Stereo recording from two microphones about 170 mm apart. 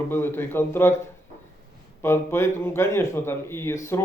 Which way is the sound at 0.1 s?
15° left (ahead or behind).